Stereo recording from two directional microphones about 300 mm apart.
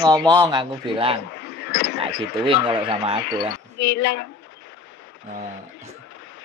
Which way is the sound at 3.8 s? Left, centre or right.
Left.